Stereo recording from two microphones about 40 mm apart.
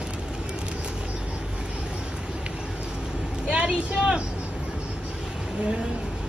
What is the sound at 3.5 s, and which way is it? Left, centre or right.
Vehicle, right.